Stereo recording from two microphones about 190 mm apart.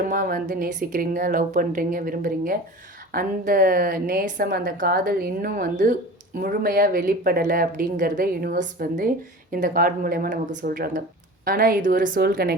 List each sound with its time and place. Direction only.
0.1 s a woman's voice: 45° right (ahead or behind)